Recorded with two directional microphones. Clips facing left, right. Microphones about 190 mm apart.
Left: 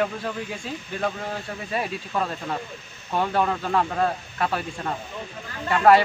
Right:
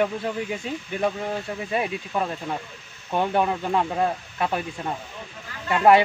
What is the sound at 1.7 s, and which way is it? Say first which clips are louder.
A man's voice: right 1 dB; 15° right (ahead or behind).